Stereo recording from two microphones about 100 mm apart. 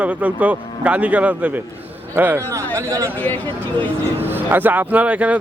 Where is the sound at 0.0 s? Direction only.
15° right (ahead or behind).